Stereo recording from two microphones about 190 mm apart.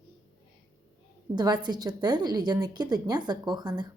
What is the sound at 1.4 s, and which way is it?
A woman's voice, 20° right (ahead or behind).